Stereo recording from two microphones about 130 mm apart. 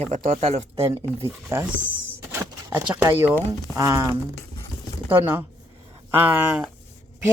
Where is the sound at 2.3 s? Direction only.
20° right (ahead or behind).